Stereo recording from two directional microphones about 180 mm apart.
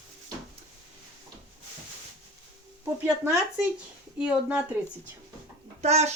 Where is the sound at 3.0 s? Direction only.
10° right (ahead or behind).